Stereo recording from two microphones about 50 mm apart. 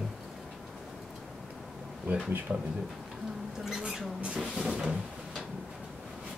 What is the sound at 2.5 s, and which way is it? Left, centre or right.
Speech, right.